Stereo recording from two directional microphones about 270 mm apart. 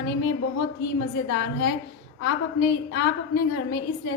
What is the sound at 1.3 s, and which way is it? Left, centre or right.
A woman's voice, left.